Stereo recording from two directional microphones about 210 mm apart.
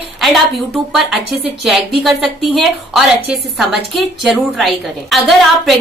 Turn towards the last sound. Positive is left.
turn(degrees=0)  # may be behind; listen again after turning